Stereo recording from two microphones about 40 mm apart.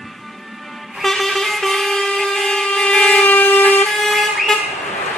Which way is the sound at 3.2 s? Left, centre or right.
Left.